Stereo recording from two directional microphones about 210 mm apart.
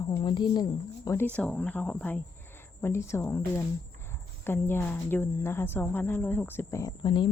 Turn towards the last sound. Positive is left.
turn(degrees=20)  # may be behind; listen again after turning